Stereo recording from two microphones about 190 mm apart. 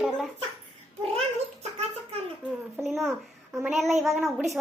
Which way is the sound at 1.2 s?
35° right (ahead or behind).